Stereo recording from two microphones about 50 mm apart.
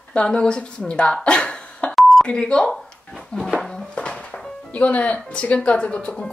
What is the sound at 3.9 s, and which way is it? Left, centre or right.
Music, left.